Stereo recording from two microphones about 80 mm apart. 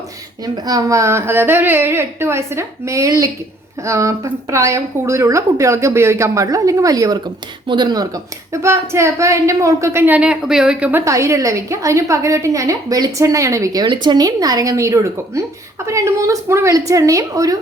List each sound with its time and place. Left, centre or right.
0.4 s a woman's voice: right
7.7 s speech: right
8.6 s a woman's voice: right
10.2 s speech: centre
11.0 s a woman's voice: right
13.8 s a woman's voice: right